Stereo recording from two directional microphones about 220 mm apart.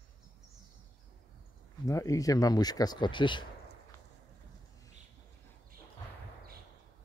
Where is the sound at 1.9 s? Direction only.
15° left (ahead or behind).